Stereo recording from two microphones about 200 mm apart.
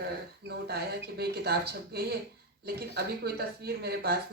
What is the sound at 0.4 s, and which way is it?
Speech, 55° right (ahead or behind).